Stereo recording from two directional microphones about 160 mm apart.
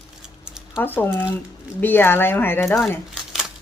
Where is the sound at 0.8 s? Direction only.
10° left (ahead or behind).